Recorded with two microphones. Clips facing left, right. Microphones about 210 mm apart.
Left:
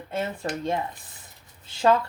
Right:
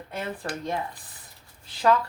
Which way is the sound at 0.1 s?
25° left (ahead or behind).